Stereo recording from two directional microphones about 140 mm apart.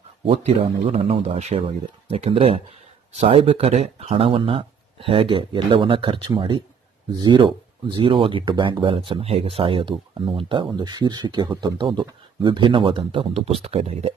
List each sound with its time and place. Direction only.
0.3 s speech: 45° right (ahead or behind)